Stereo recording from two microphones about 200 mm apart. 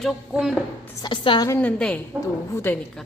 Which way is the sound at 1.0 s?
25° left (ahead or behind).